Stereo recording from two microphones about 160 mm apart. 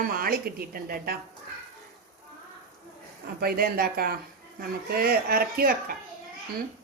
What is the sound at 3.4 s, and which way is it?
A woman's voice, 70° right (ahead or behind).